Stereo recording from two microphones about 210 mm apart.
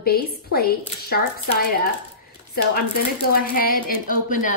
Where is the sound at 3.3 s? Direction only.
45° left (ahead or behind).